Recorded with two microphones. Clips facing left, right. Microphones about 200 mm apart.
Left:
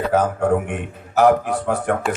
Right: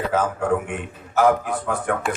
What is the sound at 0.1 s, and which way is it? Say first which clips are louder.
Speech: left 4 dB; 35° left (ahead or behind).